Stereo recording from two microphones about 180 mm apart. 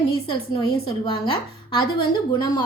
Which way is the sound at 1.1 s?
30° left (ahead or behind).